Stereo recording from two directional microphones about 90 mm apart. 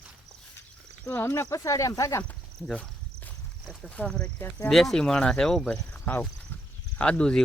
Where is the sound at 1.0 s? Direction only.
25° left (ahead or behind).